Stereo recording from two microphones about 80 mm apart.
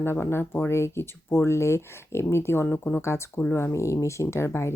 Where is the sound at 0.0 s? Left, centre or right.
Left.